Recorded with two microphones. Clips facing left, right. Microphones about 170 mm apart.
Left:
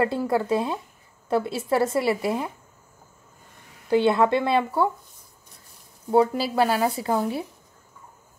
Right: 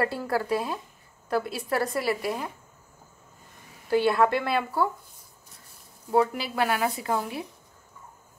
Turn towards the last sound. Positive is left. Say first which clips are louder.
# left 4 dB
turn(degrees=30)  # may be behind; listen again after turning